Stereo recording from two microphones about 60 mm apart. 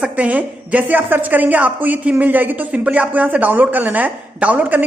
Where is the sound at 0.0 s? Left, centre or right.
Right.